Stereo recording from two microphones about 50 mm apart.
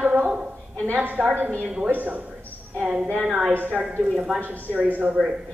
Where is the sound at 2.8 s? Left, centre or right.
Right.